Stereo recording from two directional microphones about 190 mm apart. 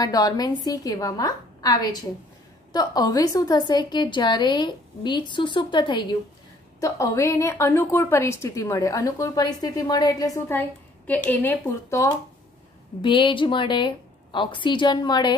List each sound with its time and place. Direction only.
0.0 s a woman's voice: 20° left (ahead or behind)
13.0 s a woman's voice: 25° left (ahead or behind)